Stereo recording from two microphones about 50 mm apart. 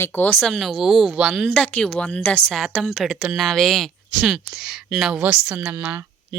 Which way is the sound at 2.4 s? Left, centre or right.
Centre.